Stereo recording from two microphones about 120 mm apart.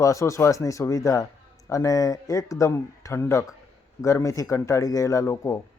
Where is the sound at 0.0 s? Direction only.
25° left (ahead or behind).